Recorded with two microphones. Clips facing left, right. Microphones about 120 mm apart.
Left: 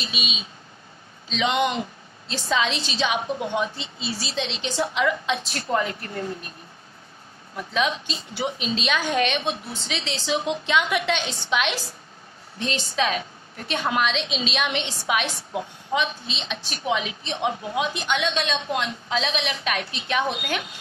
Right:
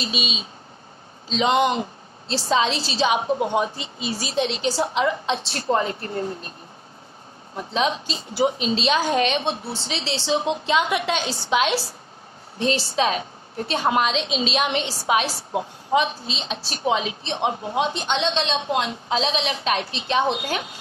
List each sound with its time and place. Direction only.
0.0 s a woman's voice: 40° right (ahead or behind)
7.5 s a woman's voice: 30° right (ahead or behind)